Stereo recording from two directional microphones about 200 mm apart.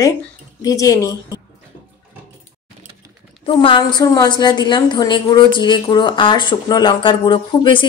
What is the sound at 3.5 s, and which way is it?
A woman's voice, 25° left (ahead or behind).